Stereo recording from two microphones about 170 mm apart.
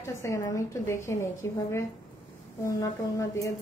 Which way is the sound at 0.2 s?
20° left (ahead or behind).